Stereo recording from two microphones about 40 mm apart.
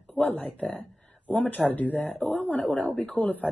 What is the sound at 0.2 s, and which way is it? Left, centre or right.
Speech, left.